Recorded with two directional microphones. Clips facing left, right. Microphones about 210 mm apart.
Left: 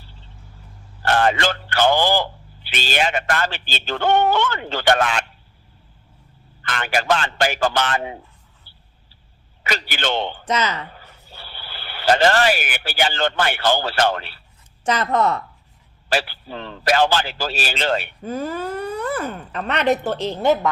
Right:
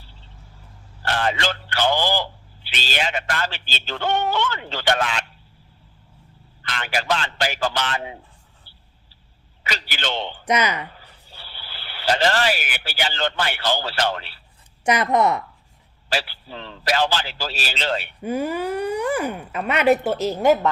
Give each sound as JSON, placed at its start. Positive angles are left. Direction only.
{"t": 1.0, "sound": "speech", "side_deg": 50}
{"t": 6.6, "sound": "speech", "side_deg": 50}
{"t": 9.6, "sound": "speech", "side_deg": 50}
{"t": 10.4, "sound": "speech", "side_deg": -10}
{"t": 11.3, "sound": "speech", "side_deg": 50}
{"t": 14.8, "sound": "speech", "side_deg": -15}
{"t": 16.0, "sound": "speech", "side_deg": 50}
{"t": 18.2, "sound": "speech", "side_deg": -15}